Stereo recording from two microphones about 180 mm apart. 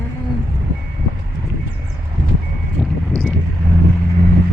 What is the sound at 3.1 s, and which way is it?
Vehicle, centre (ahead or behind).